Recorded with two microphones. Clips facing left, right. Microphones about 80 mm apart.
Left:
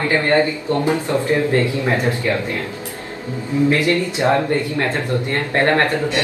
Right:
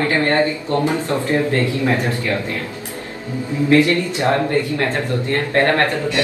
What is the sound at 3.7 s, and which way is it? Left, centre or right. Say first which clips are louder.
Speech: right 3 dB; left.